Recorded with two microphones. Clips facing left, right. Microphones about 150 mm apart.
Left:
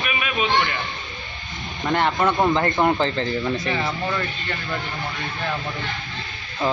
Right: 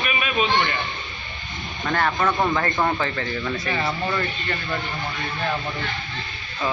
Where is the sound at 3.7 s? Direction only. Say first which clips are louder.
Even; centre (ahead or behind).